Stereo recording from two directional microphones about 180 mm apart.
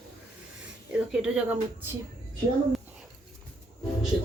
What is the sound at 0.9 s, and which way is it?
Speech, 5° right (ahead or behind).